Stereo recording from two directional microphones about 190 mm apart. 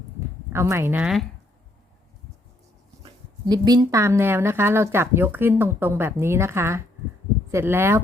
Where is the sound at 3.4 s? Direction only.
20° right (ahead or behind).